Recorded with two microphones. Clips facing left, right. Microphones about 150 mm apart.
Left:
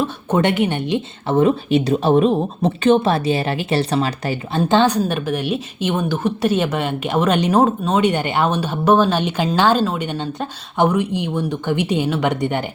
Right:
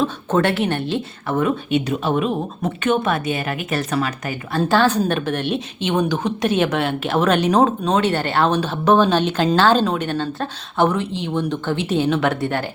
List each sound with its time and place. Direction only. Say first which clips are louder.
0.0 s speech: even; 10° left (ahead or behind)
1.4 s speech: left 4 dB; 30° left (ahead or behind)
4.7 s a woman's voice: left 2 dB; 20° left (ahead or behind)
5.0 s speech: even; 10° left (ahead or behind)